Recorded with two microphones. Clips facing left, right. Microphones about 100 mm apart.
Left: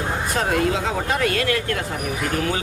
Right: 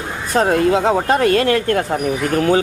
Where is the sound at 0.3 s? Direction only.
40° right (ahead or behind).